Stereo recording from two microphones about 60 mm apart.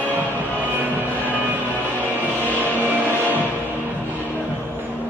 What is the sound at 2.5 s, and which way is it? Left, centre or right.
Music, right.